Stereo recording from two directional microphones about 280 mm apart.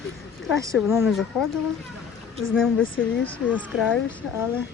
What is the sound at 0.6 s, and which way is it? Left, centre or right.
Speech, centre.